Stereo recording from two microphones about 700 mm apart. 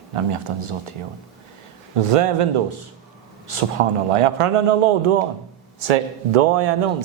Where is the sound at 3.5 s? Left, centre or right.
Right.